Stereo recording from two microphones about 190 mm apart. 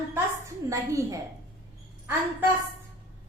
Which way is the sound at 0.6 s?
15° right (ahead or behind).